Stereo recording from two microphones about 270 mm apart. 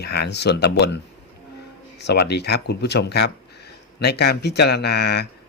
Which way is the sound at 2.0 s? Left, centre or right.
Left.